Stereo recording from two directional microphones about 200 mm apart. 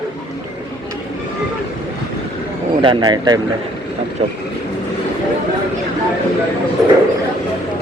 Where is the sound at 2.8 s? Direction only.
25° right (ahead or behind).